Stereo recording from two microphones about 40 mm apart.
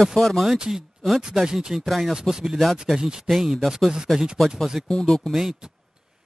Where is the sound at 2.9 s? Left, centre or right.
Centre.